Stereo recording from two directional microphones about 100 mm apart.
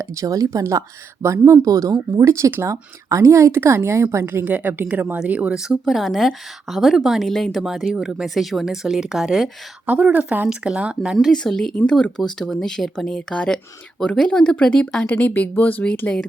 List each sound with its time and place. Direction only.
0.0 s a woman's voice: 30° right (ahead or behind); by 9.5 s 5° right (ahead or behind)
9.8 s speech: 15° right (ahead or behind); by 16.2 s 10° left (ahead or behind)